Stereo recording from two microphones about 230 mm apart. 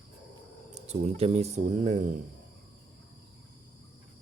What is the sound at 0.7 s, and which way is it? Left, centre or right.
Speech, right.